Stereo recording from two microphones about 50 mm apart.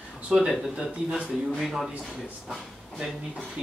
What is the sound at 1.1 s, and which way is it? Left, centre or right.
Speech, centre.